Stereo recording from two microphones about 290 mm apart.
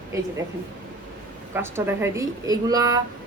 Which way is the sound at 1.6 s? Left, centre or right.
Centre.